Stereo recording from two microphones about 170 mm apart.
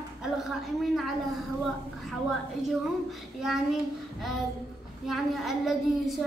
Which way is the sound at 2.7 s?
Centre (ahead or behind).